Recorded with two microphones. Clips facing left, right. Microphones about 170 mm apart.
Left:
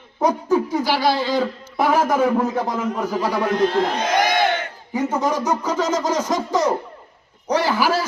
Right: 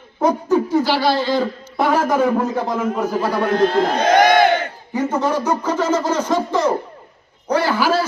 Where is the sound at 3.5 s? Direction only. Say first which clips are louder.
Right 3 dB; 60° right (ahead or behind).